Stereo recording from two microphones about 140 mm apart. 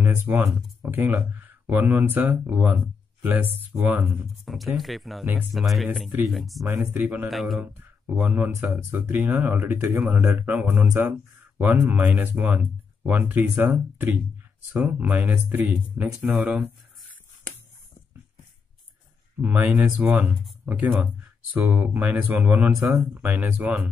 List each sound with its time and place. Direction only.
0.0 s speech: 15° right (ahead or behind)
4.5 s speech: centre (ahead or behind)
5.2 s speech: 10° right (ahead or behind)
6.9 s speech: 15° right (ahead or behind)
7.2 s speech: centre (ahead or behind)
7.6 s speech: 15° right (ahead or behind)
19.4 s speech: 10° right (ahead or behind)